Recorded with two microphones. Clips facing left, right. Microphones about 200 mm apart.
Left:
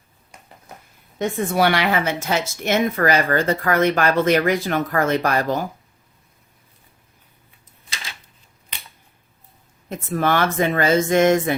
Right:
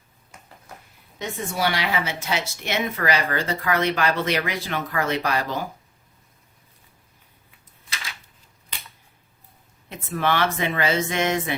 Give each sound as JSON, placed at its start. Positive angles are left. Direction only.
{"t": 0.3, "sound": "a sound", "side_deg": 15}
{"t": 1.2, "sound": "speech", "side_deg": 60}
{"t": 9.9, "sound": "speech", "side_deg": 45}